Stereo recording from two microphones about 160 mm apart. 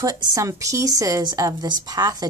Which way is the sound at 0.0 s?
25° right (ahead or behind).